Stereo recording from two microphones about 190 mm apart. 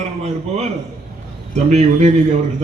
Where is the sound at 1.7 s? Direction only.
35° right (ahead or behind).